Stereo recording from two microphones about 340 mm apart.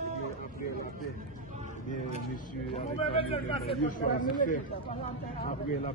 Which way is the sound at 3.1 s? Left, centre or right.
Centre.